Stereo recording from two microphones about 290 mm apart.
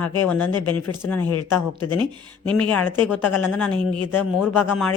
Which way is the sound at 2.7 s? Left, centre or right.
Centre.